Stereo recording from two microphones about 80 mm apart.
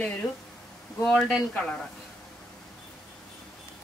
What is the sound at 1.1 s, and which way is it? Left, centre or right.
Speech, centre.